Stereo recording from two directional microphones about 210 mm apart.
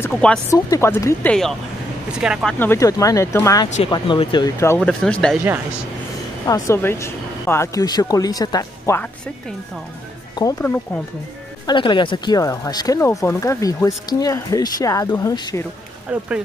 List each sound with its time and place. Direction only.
0.0 s speech: 5° left (ahead or behind)
2.6 s speech: 15° left (ahead or behind)
4.7 s speech: 5° left (ahead or behind)
6.4 s speech: 15° left (ahead or behind)
10.4 s speech: 10° left (ahead or behind)
11.6 s speech: 20° left (ahead or behind)